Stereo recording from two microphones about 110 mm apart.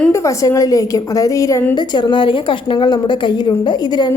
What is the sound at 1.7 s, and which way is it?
A woman's voice, 45° left (ahead or behind).